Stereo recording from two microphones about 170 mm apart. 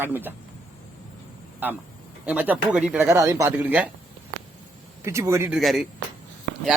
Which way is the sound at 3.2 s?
20° right (ahead or behind).